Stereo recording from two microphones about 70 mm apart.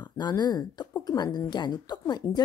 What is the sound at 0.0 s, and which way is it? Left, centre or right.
A woman's voice, left.